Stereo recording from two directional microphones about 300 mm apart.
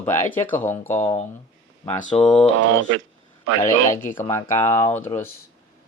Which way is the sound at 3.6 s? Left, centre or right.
Centre.